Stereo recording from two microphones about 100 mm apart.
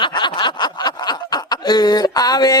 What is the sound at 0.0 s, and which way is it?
Snicker, 50° left (ahead or behind).